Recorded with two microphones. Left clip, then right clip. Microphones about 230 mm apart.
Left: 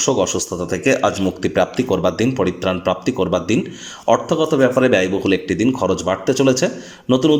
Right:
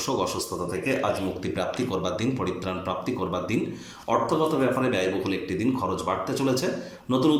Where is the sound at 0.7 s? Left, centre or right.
Left.